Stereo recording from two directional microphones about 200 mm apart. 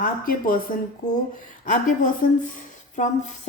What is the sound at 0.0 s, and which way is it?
Speech, 45° left (ahead or behind).